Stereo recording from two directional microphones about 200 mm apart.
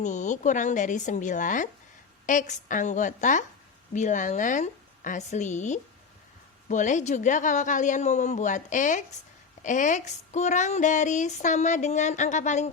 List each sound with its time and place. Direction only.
0.0 s speech: 35° left (ahead or behind)